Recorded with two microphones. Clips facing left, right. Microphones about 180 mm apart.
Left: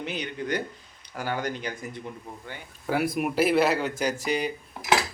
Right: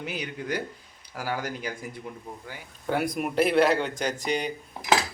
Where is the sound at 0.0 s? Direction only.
5° right (ahead or behind).